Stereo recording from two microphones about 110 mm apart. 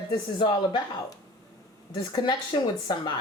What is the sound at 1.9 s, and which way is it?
Speech, 40° left (ahead or behind).